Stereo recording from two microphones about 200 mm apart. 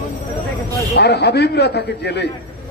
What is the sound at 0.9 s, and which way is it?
A man's voice, 55° left (ahead or behind).